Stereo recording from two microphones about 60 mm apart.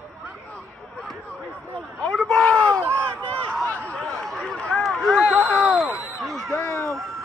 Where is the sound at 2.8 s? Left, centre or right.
Right.